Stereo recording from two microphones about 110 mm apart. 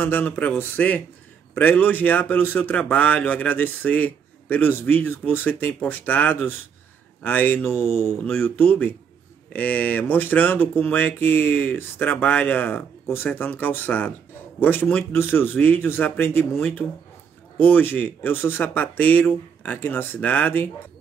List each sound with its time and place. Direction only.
0.0 s a man's voice: 15° left (ahead or behind)